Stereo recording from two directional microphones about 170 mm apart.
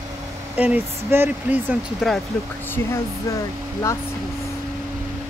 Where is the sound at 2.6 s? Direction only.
15° left (ahead or behind).